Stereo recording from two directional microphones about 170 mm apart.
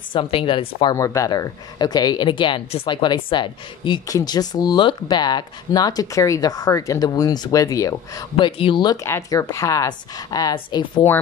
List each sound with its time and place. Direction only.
0.1 s speech: 30° left (ahead or behind)
0.9 s a woman's voice: 20° left (ahead or behind)